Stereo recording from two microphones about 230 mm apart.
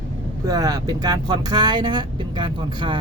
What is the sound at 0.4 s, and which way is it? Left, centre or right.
Speech, centre.